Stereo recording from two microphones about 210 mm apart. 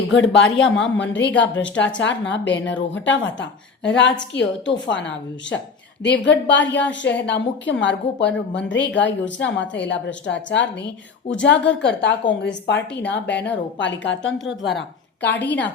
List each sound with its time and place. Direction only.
0.1 s a woman's voice: 60° left (ahead or behind)
13.1 s speech: 5° left (ahead or behind)
13.7 s a woman's voice: 60° left (ahead or behind)
14.8 s speech: 55° left (ahead or behind)
15.4 s speech: 10° left (ahead or behind)